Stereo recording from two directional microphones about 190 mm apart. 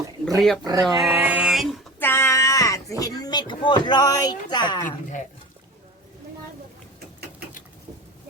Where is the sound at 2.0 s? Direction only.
10° left (ahead or behind).